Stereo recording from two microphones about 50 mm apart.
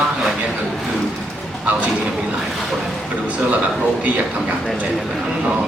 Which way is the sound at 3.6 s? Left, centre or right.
Right.